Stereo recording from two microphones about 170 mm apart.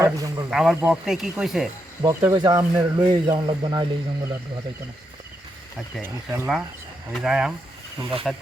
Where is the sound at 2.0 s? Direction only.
20° right (ahead or behind).